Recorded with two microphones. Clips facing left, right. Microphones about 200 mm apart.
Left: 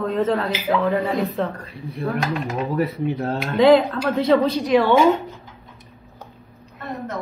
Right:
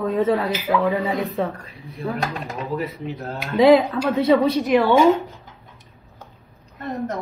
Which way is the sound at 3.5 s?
5° right (ahead or behind).